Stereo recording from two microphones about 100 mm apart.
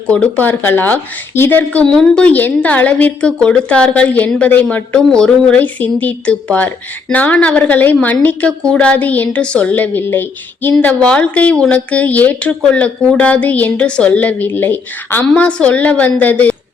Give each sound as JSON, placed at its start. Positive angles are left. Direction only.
{"t": 0.1, "sound": "a woman's voice", "side_deg": 15}